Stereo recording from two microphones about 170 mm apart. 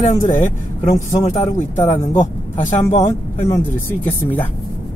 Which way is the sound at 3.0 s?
15° left (ahead or behind).